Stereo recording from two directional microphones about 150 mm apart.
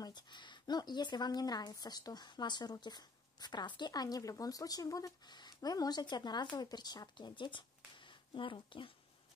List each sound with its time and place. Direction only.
0.0 s a woman's voice: 30° left (ahead or behind)